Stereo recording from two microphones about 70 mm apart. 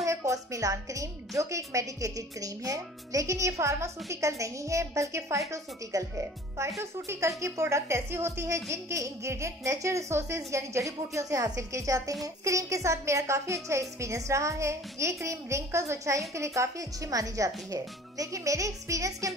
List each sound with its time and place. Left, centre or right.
0.0 s a woman's voice: right
6.8 s a woman's voice: right